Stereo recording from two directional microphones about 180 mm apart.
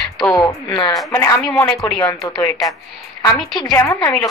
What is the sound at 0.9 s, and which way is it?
Speech, centre (ahead or behind).